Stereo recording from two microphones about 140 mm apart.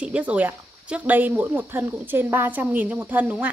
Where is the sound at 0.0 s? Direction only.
10° right (ahead or behind).